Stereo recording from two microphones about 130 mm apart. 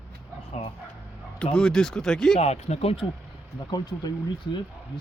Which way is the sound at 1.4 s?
5° left (ahead or behind).